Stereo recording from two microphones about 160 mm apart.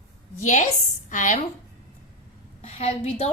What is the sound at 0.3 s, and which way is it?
A woman's voice, 50° left (ahead or behind).